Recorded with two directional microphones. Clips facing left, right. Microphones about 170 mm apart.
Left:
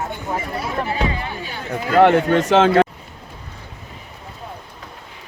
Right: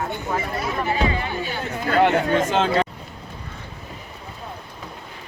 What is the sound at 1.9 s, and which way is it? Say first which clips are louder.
Speech: left 5 dB; 55° left (ahead or behind).